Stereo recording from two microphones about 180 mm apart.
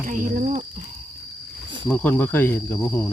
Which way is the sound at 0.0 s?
50° right (ahead or behind).